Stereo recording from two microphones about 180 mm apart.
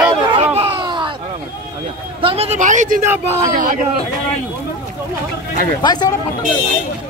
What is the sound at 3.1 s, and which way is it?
Speech, 10° right (ahead or behind).